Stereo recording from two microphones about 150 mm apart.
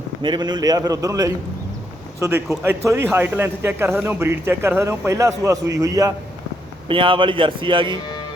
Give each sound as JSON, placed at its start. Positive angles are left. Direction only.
{"t": 0.2, "sound": "a man's voice", "side_deg": -30}
{"t": 6.8, "sound": "a man's voice", "side_deg": -35}